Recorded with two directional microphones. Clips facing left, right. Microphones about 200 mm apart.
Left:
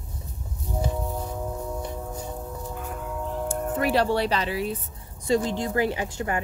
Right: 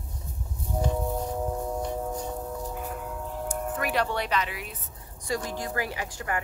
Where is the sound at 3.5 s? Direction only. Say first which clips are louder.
Left 5 dB; 30° left (ahead or behind).